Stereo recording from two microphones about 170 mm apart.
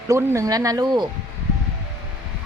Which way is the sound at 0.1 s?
15° right (ahead or behind).